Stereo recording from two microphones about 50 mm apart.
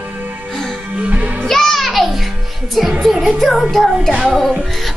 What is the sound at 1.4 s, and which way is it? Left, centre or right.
Music, centre.